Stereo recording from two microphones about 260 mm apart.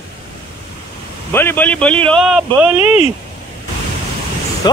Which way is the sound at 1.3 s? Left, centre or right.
Centre.